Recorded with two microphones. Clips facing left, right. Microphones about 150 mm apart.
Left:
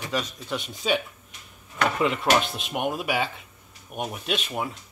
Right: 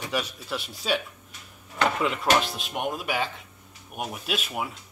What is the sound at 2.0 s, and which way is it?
Speech, centre (ahead or behind).